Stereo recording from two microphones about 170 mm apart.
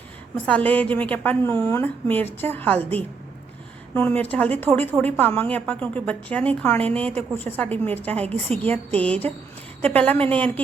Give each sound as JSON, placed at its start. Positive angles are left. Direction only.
{"t": 0.3, "sound": "a woman's voice", "side_deg": 10}
{"t": 8.2, "sound": "a woman's voice", "side_deg": -35}
{"t": 8.5, "sound": "a woman's voice", "side_deg": 10}